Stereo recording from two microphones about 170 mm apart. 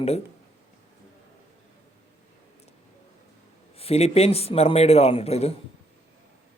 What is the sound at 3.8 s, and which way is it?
Speech, 35° left (ahead or behind).